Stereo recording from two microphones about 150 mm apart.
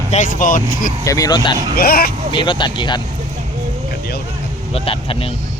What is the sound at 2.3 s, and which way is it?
Speech, 30° left (ahead or behind).